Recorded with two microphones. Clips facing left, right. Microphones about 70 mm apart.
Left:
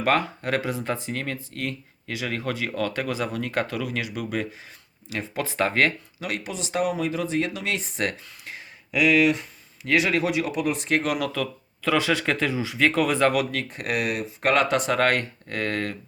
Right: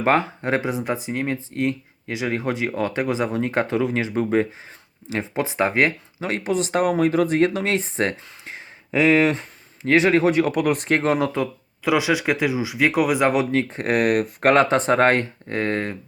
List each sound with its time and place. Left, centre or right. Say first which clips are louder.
0.0 s speech: right 3 dB; right
6.2 s speech: right 8 dB; right
11.8 s speech: right 3 dB; centre; by 14.5 s right
14.5 s speech: right 4 dB; right